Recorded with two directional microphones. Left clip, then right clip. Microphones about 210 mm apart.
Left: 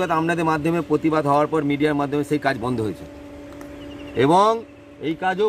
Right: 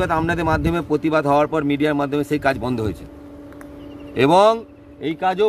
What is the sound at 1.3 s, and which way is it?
A man's voice, 20° right (ahead or behind).